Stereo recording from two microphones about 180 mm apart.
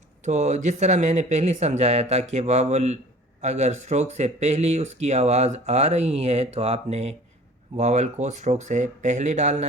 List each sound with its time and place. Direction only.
0.3 s speech: 40° right (ahead or behind)